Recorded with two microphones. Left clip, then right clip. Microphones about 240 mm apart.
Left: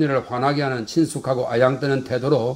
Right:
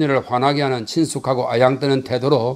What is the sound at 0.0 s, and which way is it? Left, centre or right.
Speech, right.